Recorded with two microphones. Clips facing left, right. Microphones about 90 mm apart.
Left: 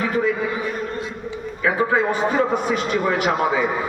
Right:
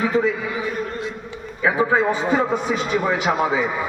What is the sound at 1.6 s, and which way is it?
A man's voice, 20° right (ahead or behind).